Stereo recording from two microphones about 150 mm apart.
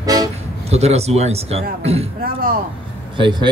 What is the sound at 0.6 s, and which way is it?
A man's voice, 45° right (ahead or behind).